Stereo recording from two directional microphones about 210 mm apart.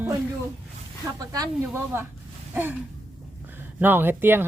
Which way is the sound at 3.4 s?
10° right (ahead or behind).